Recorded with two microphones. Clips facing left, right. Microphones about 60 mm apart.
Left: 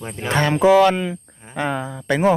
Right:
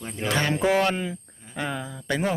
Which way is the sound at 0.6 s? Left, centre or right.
Left.